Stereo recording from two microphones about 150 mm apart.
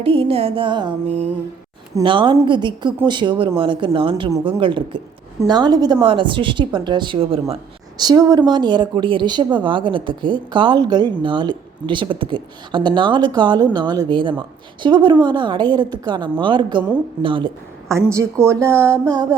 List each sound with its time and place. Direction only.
0.0 s a woman's voice: 40° right (ahead or behind)
1.0 s a sound: 45° right (ahead or behind)
2.0 s a woman's voice: 35° right (ahead or behind)
7.9 s a woman's voice: 25° right (ahead or behind)
17.8 s a woman's voice: 20° right (ahead or behind)
18.7 s a sound: 10° left (ahead or behind)
19.1 s a woman's voice: 25° right (ahead or behind)